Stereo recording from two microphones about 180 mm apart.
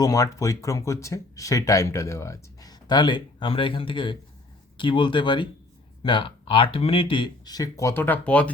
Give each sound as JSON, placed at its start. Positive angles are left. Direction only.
{"t": 0.0, "sound": "speech", "side_deg": 20}